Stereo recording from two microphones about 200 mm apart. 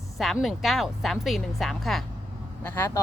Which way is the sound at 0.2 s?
Centre (ahead or behind).